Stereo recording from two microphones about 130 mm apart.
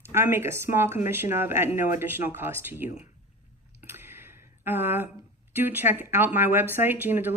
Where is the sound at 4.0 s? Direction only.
15° right (ahead or behind).